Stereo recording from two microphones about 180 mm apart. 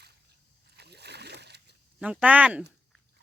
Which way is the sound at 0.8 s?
65° right (ahead or behind).